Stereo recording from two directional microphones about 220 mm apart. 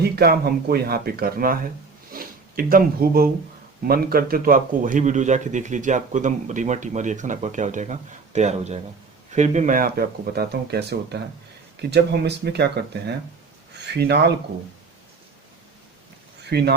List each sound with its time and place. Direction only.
0.0 s a man's voice: 45° right (ahead or behind)
16.5 s speech: 45° right (ahead or behind)